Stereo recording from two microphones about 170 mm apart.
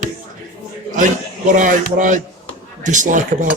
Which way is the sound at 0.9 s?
50° right (ahead or behind).